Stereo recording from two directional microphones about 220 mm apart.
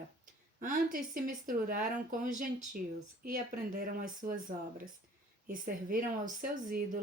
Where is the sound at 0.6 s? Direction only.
40° right (ahead or behind).